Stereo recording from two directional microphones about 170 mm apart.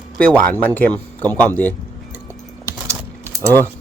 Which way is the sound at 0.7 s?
10° left (ahead or behind).